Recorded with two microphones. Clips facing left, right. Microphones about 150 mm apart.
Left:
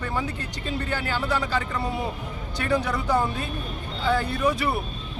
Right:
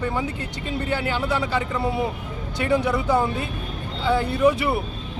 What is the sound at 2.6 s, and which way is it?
Speech, 25° right (ahead or behind).